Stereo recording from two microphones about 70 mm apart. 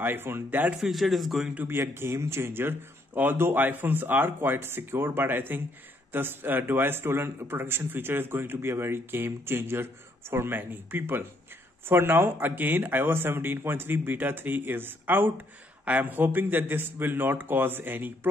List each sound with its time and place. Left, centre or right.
0.0 s a man's voice: right
0.7 s a man's voice: centre
1.5 s a man's voice: right